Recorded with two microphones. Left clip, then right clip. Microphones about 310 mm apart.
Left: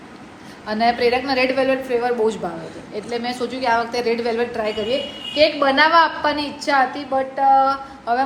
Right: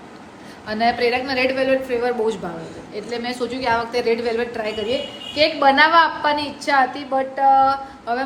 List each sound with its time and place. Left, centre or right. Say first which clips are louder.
0.7 s a woman's voice: left 1 dB; centre